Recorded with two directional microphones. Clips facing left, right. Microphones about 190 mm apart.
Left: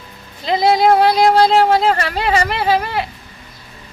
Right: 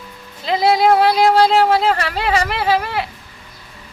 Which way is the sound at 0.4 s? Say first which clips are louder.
Left 1 dB; 5° right (ahead or behind).